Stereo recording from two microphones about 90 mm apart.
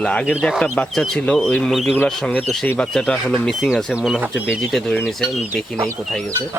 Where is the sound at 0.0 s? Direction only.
15° left (ahead or behind).